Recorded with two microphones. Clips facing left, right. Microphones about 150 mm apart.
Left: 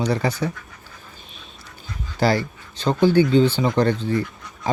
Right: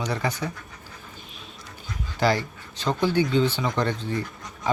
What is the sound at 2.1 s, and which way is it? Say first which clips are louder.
Speech: left 3 dB; 35° left (ahead or behind).